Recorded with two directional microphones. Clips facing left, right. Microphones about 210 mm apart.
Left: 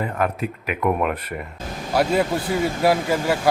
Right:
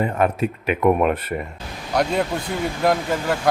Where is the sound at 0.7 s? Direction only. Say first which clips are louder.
Right 4 dB; 25° right (ahead or behind).